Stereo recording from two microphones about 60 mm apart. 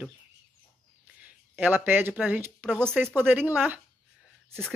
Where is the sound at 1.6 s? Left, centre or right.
Right.